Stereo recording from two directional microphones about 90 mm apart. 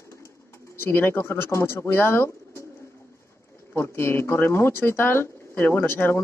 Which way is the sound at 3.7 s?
25° left (ahead or behind).